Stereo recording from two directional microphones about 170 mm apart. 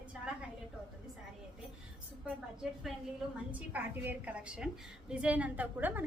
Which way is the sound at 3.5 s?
10° right (ahead or behind).